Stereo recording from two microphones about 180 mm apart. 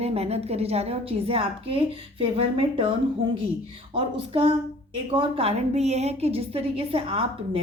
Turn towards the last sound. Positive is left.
turn(degrees=-30)  # may be behind; listen again after turning